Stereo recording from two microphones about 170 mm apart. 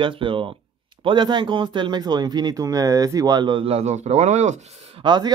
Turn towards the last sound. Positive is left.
turn(degrees=-25)  # may be behind; listen again after turning